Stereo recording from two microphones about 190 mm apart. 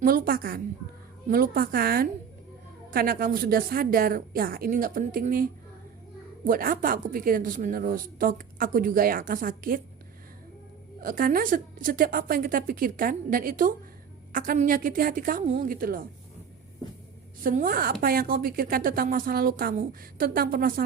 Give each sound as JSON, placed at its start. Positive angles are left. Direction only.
{"t": 0.0, "sound": "a woman's voice", "side_deg": -50}
{"t": 11.0, "sound": "a woman's voice", "side_deg": -45}
{"t": 17.4, "sound": "a woman's voice", "side_deg": -45}